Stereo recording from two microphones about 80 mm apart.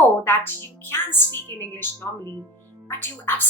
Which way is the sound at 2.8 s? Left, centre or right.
Left.